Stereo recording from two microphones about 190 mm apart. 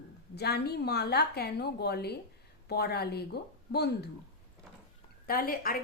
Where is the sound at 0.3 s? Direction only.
60° left (ahead or behind).